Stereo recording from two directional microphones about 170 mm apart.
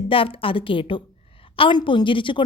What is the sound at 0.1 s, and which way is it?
A woman's voice, 30° left (ahead or behind).